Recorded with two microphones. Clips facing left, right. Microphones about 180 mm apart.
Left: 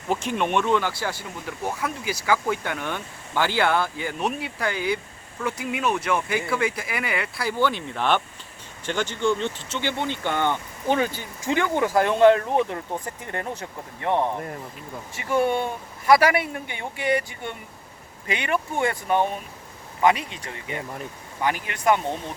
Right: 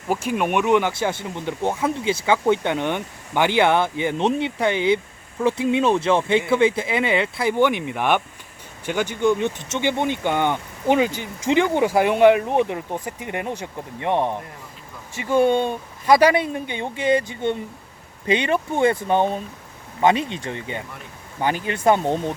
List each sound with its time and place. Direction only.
0.1 s speech: 5° right (ahead or behind); by 22.0 s 30° right (ahead or behind)